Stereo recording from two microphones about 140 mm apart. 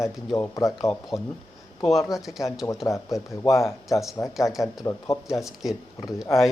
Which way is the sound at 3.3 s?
20° left (ahead or behind).